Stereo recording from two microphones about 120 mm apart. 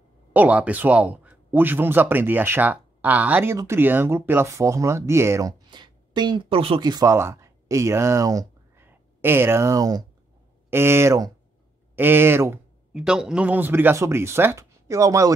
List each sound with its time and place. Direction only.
0.3 s speech: 15° right (ahead or behind)
5.7 s speech: 40° right (ahead or behind)
6.8 s speech: 35° right (ahead or behind)
10.7 s speech: 20° right (ahead or behind)
12.9 s speech: 5° right (ahead or behind); by 15.3 s 25° right (ahead or behind)